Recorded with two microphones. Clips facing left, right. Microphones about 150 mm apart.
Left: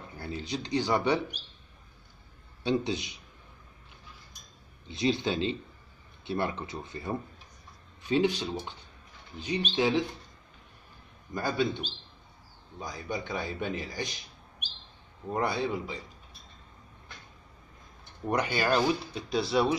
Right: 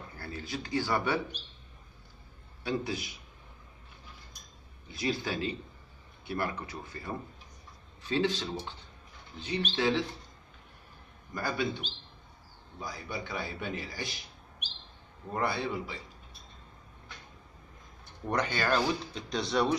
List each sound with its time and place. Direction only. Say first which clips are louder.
0.1 s speech: left 4 dB; 20° left (ahead or behind)
2.6 s a man's voice: left 4 dB; 20° left (ahead or behind)
4.8 s a man's voice: left 5 dB; 20° left (ahead or behind)
11.3 s a man's voice: left 3 dB; 20° left (ahead or behind)
12.7 s a man's voice: left 3 dB; 20° left (ahead or behind)
15.3 s a man's voice: left 2 dB; 20° left (ahead or behind)
18.2 s speech: left 2 dB; 10° left (ahead or behind)